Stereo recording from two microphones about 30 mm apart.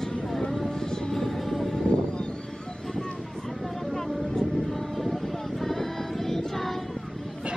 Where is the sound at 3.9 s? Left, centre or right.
Centre.